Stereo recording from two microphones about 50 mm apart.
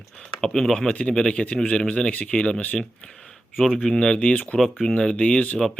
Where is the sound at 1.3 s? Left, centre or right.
Left.